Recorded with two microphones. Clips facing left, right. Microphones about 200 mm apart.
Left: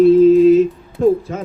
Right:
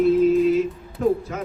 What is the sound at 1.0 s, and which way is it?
Music, 30° left (ahead or behind).